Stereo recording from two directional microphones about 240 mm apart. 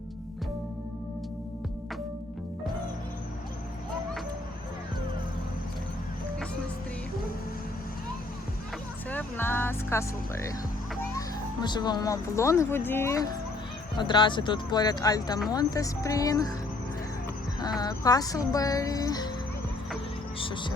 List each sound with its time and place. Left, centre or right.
9.0 s music: centre
11.6 s music: centre
14.0 s speech: centre
15.4 s music: centre
17.6 s music: centre
20.4 s speech: centre